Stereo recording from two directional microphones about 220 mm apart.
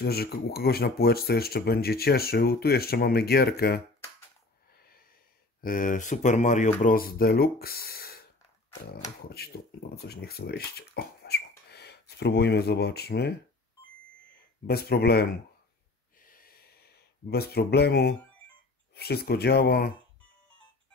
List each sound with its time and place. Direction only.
0.0 s speech: 45° left (ahead or behind)
4.7 s a sound: 45° left (ahead or behind)
5.6 s speech: 40° left (ahead or behind)
9.3 s speech: 45° left (ahead or behind)
14.7 s speech: 45° left (ahead or behind)
16.2 s a sound: 40° left (ahead or behind)
17.3 s speech: 45° left (ahead or behind)